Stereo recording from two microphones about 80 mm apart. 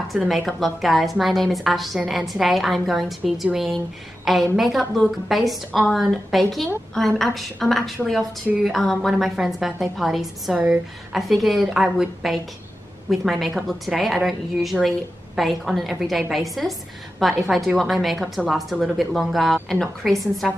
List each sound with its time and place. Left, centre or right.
0.1 s a woman's voice: centre